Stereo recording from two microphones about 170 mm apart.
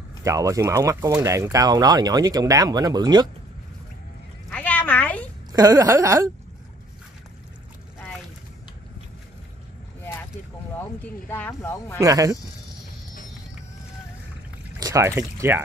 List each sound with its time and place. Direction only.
0.2 s speech: 20° right (ahead or behind)
4.5 s a sound: 10° left (ahead or behind)
5.5 s speech: 20° right (ahead or behind)
11.0 s speech: 10° left (ahead or behind)
12.0 s speech: 20° right (ahead or behind)
14.8 s speech: 20° right (ahead or behind)